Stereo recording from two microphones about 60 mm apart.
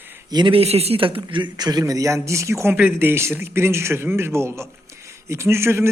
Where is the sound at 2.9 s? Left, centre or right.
Right.